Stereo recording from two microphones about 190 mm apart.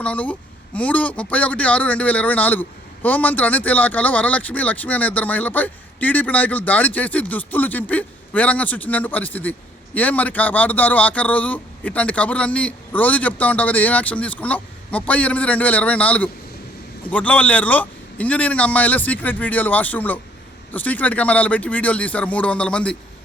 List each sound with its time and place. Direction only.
0.0 s speech: 5° left (ahead or behind)